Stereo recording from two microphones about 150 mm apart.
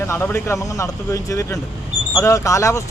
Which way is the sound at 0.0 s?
20° left (ahead or behind).